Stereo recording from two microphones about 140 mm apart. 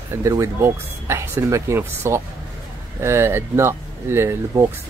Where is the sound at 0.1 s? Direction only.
25° right (ahead or behind).